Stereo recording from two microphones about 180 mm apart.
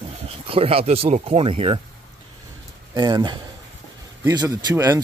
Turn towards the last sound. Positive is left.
turn(degrees=-20)  # may be behind; listen again after turning